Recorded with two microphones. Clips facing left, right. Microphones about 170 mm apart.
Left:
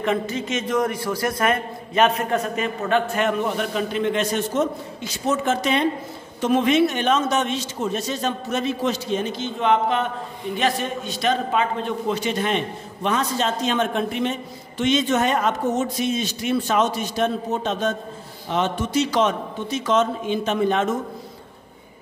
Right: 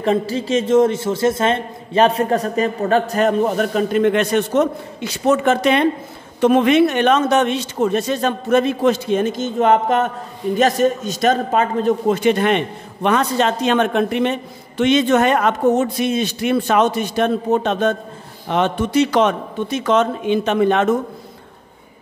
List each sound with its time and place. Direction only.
0.0 s a man's voice: 30° right (ahead or behind); by 20.9 s 65° right (ahead or behind)